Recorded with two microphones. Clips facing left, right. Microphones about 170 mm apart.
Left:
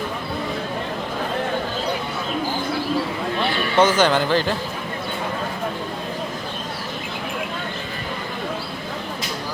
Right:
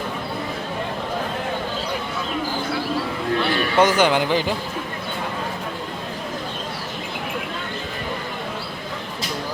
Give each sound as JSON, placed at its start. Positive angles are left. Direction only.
{"t": 3.8, "sound": "speech", "side_deg": -10}